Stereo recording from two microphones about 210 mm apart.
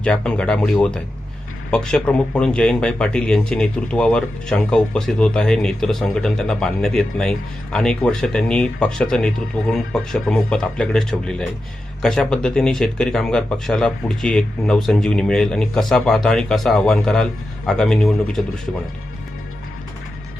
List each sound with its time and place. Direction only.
0.0 s speech: 5° left (ahead or behind)